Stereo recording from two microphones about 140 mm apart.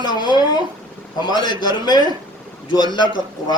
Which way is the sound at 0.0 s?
30° left (ahead or behind).